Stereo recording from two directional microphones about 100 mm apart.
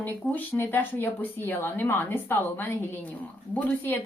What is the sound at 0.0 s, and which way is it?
A woman's voice, 15° left (ahead or behind).